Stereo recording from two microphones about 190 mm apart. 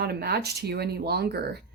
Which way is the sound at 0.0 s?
55° right (ahead or behind).